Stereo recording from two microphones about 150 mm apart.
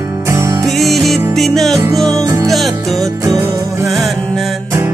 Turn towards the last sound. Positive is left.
turn(degrees=0)  # may be behind; listen again after turning